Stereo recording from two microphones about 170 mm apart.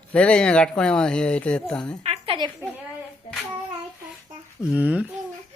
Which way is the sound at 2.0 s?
35° right (ahead or behind).